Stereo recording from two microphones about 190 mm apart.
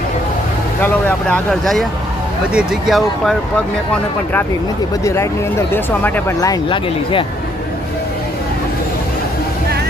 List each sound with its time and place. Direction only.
0.8 s speech: 10° left (ahead or behind)
5.0 s speech: 15° left (ahead or behind)